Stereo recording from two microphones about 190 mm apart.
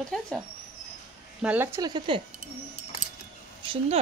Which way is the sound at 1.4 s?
10° right (ahead or behind).